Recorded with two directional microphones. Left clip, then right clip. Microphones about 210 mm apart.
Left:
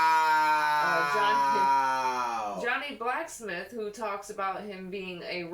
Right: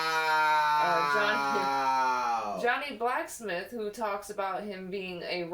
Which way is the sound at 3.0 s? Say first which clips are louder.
Right 1 dB; 25° right (ahead or behind).